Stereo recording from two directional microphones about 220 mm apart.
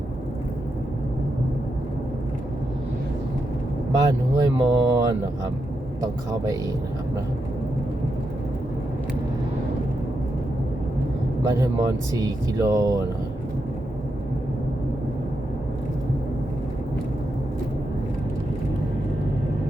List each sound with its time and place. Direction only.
3.9 s speech: 20° right (ahead or behind)
11.4 s speech: 15° right (ahead or behind)